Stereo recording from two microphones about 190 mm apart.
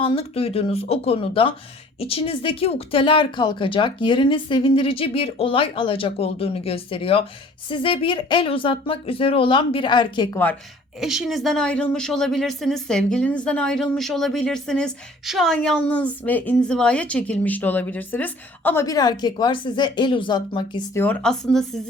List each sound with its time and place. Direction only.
0.0 s speech: 30° left (ahead or behind)
11.0 s speech: centre (ahead or behind); by 20.8 s 25° left (ahead or behind)
20.9 s speech: 10° left (ahead or behind)